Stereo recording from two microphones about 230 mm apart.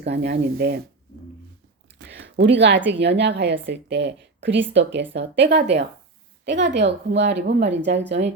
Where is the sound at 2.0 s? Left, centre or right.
Right.